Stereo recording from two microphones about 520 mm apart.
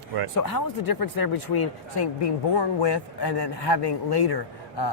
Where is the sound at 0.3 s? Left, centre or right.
Left.